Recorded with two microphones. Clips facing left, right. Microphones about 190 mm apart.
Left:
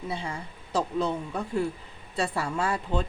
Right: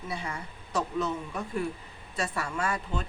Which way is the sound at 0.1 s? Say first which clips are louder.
Right 1 dB; 30° left (ahead or behind).